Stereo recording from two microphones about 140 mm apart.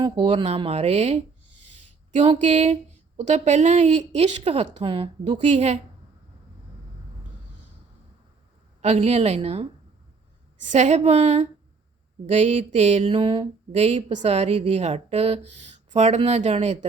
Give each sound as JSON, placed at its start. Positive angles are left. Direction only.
{"t": 0.0, "sound": "speech", "side_deg": -35}
{"t": 8.8, "sound": "speech", "side_deg": -50}
{"t": 13.1, "sound": "speech", "side_deg": -35}